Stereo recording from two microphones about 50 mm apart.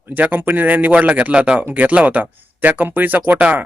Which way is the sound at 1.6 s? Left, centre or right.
Right.